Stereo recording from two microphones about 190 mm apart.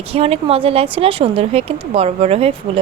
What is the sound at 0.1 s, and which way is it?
Speech, 30° right (ahead or behind).